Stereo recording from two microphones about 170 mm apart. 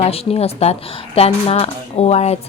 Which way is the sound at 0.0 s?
35° left (ahead or behind).